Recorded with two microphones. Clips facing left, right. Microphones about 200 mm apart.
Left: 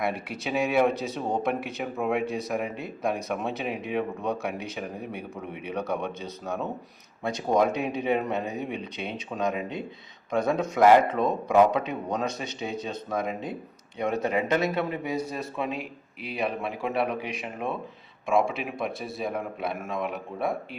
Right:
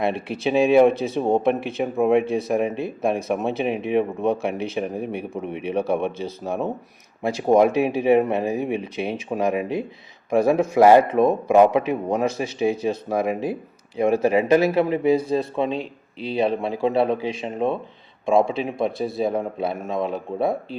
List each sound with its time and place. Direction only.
0.0 s speech: 25° right (ahead or behind)